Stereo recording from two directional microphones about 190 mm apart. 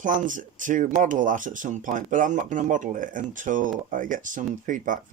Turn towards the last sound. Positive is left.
turn(degrees=-45)  # may be behind; listen again after turning